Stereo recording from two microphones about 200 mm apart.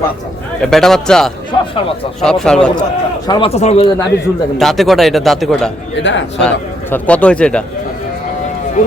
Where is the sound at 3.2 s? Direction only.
20° left (ahead or behind).